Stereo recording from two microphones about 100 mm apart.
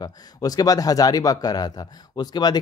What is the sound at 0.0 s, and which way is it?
Speech, 40° left (ahead or behind).